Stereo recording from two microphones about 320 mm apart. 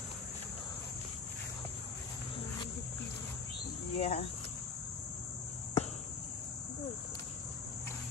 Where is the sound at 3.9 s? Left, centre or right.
Centre.